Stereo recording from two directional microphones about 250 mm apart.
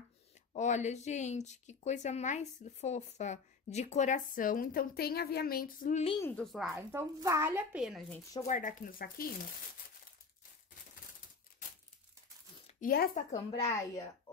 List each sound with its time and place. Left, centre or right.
0.5 s speech: left
6.2 s speech: centre
8.5 s speech: left
12.6 s speech: left
13.3 s speech: centre